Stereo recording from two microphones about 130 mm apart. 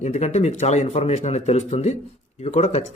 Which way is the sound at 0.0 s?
60° left (ahead or behind).